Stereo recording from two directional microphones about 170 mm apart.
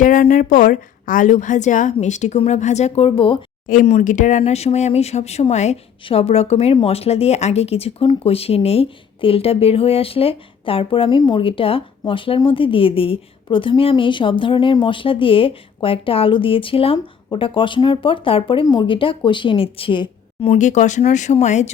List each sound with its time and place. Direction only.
0.0 s a woman's voice: 50° left (ahead or behind); by 3.4 s 30° left (ahead or behind)
3.7 s speech: 45° left (ahead or behind); by 20.6 s 30° left (ahead or behind)
20.6 s a woman's voice: 45° left (ahead or behind)